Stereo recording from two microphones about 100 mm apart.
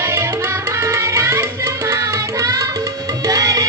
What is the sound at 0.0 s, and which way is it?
Music, 25° right (ahead or behind).